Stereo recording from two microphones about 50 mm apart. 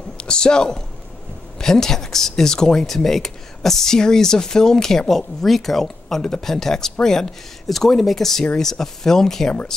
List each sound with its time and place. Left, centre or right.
0.2 s a man's voice: centre